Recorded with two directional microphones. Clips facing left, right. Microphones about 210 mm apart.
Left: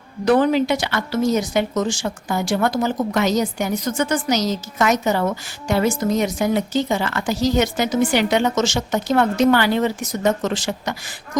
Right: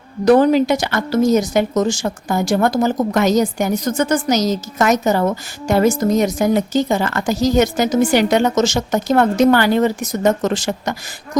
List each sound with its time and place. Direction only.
0.3 s a woman's voice: 40° right (ahead or behind)